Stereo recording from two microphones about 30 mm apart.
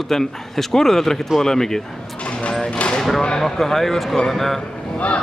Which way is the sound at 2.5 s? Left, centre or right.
Left.